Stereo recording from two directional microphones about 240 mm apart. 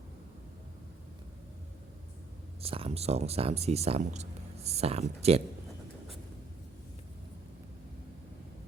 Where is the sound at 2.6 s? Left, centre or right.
Right.